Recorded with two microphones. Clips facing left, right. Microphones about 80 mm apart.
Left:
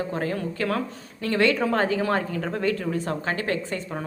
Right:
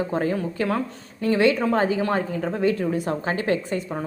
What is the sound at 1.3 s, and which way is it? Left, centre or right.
A woman's voice, centre.